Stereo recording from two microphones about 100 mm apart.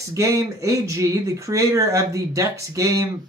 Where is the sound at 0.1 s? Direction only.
35° right (ahead or behind).